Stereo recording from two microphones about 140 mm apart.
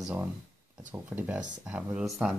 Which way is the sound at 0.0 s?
10° right (ahead or behind).